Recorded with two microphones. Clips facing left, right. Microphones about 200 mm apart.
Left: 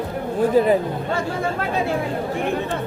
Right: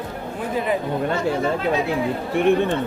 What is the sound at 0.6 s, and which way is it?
Speech, 40° left (ahead or behind).